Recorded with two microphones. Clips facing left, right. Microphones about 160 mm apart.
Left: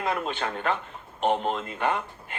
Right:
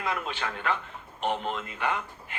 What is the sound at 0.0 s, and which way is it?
A man's voice, 50° left (ahead or behind).